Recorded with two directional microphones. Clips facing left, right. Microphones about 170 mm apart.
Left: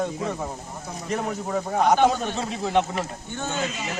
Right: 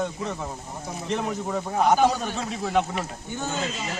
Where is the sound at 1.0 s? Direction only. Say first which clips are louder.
Even; 5° left (ahead or behind).